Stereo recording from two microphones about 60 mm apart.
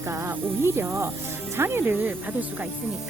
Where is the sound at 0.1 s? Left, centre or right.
Right.